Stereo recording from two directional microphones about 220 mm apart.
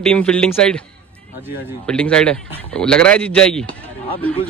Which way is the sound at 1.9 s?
5° left (ahead or behind).